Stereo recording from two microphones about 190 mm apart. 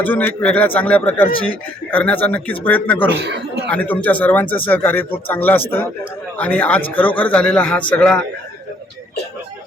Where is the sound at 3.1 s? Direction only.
65° right (ahead or behind).